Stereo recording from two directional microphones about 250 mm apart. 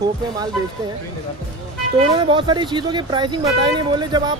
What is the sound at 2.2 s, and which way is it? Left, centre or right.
Speech, centre.